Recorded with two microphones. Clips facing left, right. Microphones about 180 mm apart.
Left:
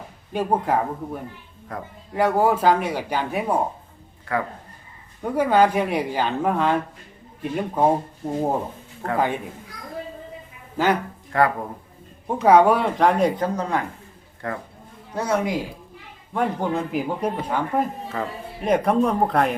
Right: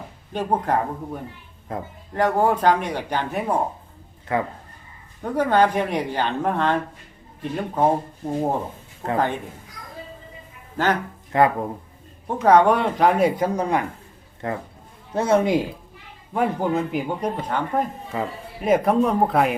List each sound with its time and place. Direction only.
0.3 s speech: 10° left (ahead or behind)
1.7 s speech: 25° right (ahead or behind)
2.1 s speech: 10° left (ahead or behind)
4.3 s speech: 20° right (ahead or behind)
5.2 s speech: 10° left (ahead or behind)
11.3 s speech: 20° right (ahead or behind)
12.3 s speech: 10° left (ahead or behind); by 15.5 s 25° right (ahead or behind)
16.3 s speech: 5° right (ahead or behind)
18.1 s speech: 5° right (ahead or behind)